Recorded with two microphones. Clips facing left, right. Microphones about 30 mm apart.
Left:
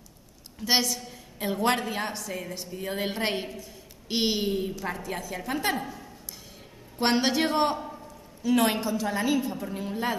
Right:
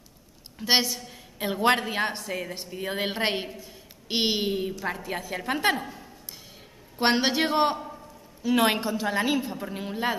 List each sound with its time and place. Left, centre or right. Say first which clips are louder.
0.6 s a woman's voice: right 2 dB; right
2.8 s a woman's voice: right 2 dB; right
5.0 s a woman's voice: right 2 dB; right
7.0 s a man's voice: right 1 dB; centre